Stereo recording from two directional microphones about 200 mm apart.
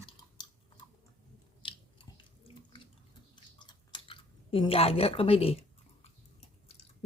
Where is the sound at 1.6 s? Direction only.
25° left (ahead or behind).